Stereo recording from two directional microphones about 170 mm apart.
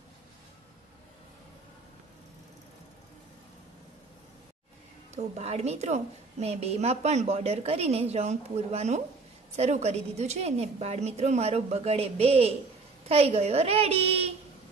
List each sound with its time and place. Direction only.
5.1 s a woman's voice: 40° right (ahead or behind)